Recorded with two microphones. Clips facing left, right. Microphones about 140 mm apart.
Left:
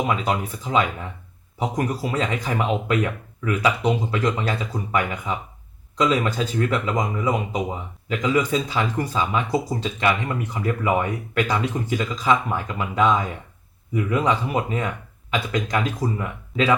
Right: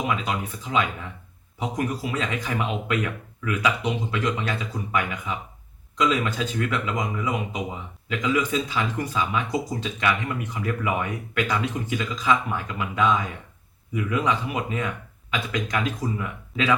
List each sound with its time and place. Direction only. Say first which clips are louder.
0.3 s speech: left 4 dB; 35° left (ahead or behind)